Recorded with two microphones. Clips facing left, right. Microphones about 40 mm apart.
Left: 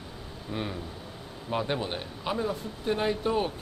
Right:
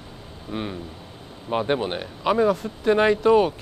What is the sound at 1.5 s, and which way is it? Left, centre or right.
Speech, right.